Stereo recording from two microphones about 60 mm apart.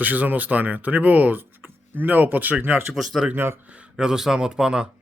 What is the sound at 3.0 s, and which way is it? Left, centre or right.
Speech, centre.